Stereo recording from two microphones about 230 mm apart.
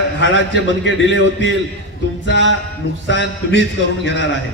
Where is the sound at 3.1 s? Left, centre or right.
Left.